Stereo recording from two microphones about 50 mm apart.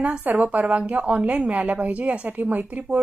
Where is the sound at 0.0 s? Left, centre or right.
Right.